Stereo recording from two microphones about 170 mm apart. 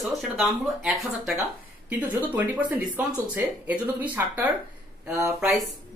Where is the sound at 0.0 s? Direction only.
Centre (ahead or behind); by 5.3 s 15° right (ahead or behind).